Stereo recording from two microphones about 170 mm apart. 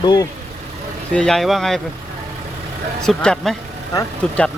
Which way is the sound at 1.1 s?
5° left (ahead or behind).